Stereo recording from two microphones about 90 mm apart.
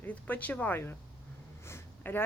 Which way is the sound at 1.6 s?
25° left (ahead or behind).